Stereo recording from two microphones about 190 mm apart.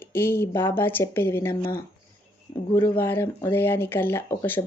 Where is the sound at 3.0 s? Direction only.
10° left (ahead or behind).